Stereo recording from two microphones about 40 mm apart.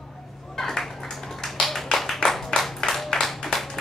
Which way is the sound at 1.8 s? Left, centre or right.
Centre.